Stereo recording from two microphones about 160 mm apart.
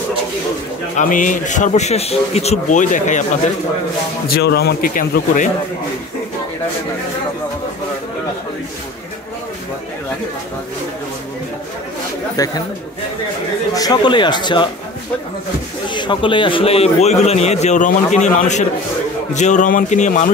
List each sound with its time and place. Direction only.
0.9 s a man's voice: 55° left (ahead or behind)
4.4 s a man's voice: 90° left; by 5.5 s 55° left (ahead or behind)
12.4 s speech: 20° left (ahead or behind)
13.7 s speech: 25° left (ahead or behind)
15.9 s a man's voice: 30° left (ahead or behind); by 20.2 s 50° left (ahead or behind)